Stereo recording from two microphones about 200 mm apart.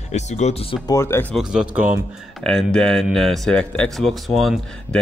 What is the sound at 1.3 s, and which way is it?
Speech, 5° right (ahead or behind).